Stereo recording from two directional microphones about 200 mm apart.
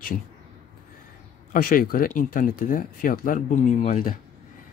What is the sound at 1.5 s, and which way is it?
Speech, 45° left (ahead or behind).